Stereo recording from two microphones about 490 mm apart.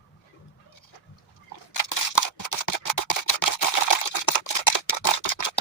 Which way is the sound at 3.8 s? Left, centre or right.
Left.